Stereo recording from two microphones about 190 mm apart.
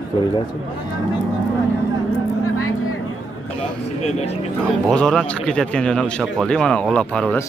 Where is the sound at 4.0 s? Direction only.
35° left (ahead or behind).